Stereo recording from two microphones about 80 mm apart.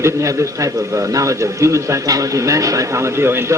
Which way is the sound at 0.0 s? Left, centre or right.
Right.